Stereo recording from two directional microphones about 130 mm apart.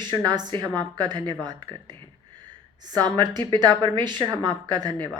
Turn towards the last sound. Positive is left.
turn(degrees=-35)  # may be behind; listen again after turning